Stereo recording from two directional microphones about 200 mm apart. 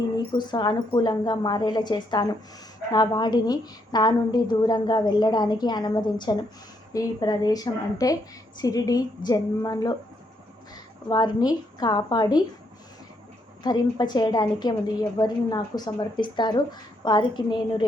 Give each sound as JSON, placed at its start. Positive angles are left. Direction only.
{"t": 0.2, "sound": "speech", "side_deg": 20}
{"t": 11.1, "sound": "speech", "side_deg": 20}
{"t": 13.6, "sound": "speech", "side_deg": 20}